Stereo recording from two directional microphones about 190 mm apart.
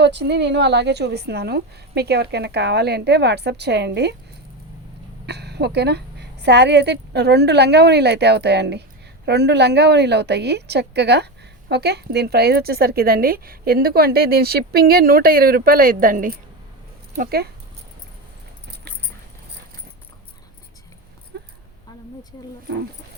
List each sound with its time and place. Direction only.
0.0 s a woman's voice: 60° right (ahead or behind)
5.2 s a woman's voice: 60° right (ahead or behind)
21.3 s a sound: 60° right (ahead or behind)